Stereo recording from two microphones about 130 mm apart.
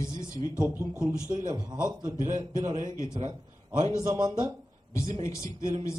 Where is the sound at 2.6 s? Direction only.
35° right (ahead or behind).